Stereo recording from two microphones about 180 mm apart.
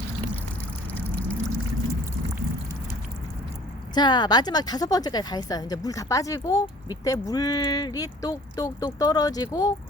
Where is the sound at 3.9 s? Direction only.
25° left (ahead or behind).